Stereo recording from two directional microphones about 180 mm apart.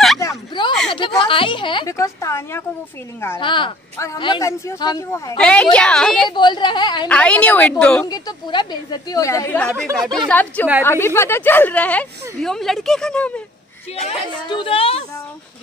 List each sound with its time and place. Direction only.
0.2 s a sound: 20° left (ahead or behind)
3.3 s a woman's voice: 25° left (ahead or behind)
5.4 s a woman's voice: 5° left (ahead or behind)
6.2 s a woman's voice: 25° left (ahead or behind)
7.1 s speech: 5° left (ahead or behind)
8.1 s a woman's voice: 25° left (ahead or behind); by 9.8 s 5° left (ahead or behind)
9.8 s speech: 20° right (ahead or behind)
10.1 s speech: 5° left (ahead or behind)
14.0 s speech: 30° left (ahead or behind)